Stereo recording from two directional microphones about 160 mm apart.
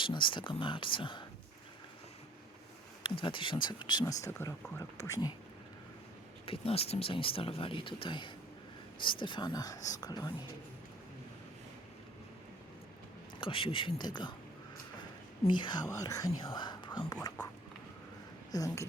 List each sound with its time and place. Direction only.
0.0 s speech: 30° left (ahead or behind)
3.0 s speech: 30° left (ahead or behind)
4.2 s speech: 15° left (ahead or behind)
6.4 s speech: 35° left (ahead or behind)
13.4 s speech: 35° left (ahead or behind)
15.4 s speech: 30° left (ahead or behind)
18.5 s speech: 20° left (ahead or behind)